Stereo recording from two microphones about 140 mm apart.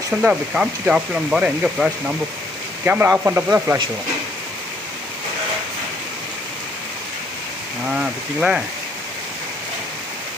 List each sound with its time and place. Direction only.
0.1 s speech: 5° right (ahead or behind)
7.9 s speech: 5° right (ahead or behind)